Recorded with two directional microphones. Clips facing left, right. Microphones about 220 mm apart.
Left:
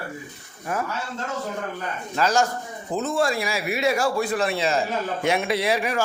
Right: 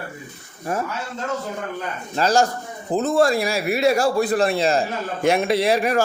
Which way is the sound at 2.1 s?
30° right (ahead or behind).